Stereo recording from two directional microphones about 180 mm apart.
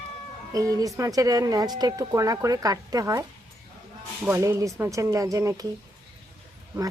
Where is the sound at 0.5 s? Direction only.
20° right (ahead or behind).